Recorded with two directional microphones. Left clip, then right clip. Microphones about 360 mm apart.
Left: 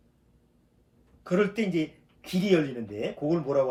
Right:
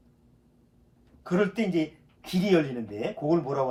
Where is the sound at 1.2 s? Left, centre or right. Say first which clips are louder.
Even; centre.